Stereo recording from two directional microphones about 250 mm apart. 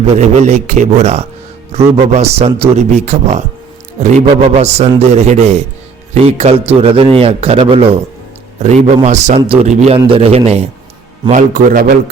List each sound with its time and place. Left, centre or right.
0.1 s a man's voice: right